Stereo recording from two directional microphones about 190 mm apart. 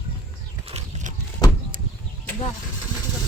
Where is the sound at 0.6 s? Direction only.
35° right (ahead or behind).